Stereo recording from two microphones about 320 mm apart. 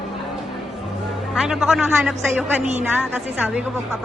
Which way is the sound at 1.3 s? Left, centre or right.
Centre.